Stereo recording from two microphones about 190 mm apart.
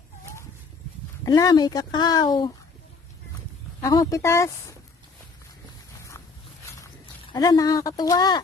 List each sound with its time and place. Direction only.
1.2 s speech: 20° left (ahead or behind)
3.8 s speech: 15° left (ahead or behind)
7.3 s speech: 20° left (ahead or behind)